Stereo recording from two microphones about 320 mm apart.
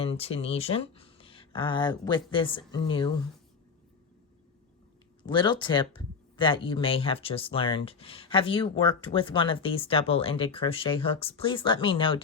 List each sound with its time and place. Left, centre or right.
0.0 s speech: centre
5.2 s speech: centre